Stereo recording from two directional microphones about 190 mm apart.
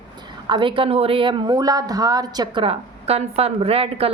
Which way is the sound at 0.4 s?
25° right (ahead or behind).